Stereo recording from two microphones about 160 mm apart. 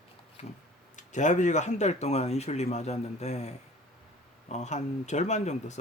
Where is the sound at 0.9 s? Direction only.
50° left (ahead or behind).